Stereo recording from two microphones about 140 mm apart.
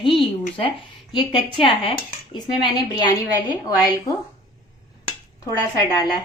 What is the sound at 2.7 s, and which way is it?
Speech, 30° left (ahead or behind).